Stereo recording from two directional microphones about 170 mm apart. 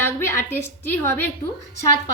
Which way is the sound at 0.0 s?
15° left (ahead or behind).